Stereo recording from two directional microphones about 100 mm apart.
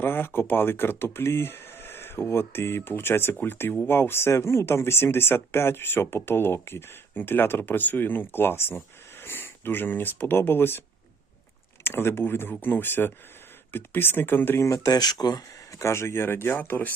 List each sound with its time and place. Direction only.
0.0 s speech: 20° left (ahead or behind); by 15.4 s 40° left (ahead or behind)
15.8 s speech: 25° left (ahead or behind)